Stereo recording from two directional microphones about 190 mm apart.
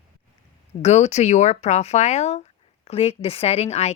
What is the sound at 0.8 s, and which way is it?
A woman's voice, 35° left (ahead or behind).